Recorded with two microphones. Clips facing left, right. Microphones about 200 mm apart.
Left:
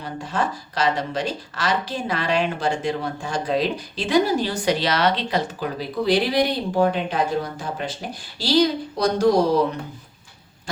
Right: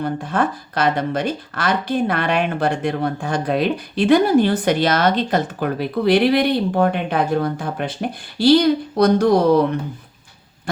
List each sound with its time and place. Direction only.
0.0 s speech: 55° right (ahead or behind)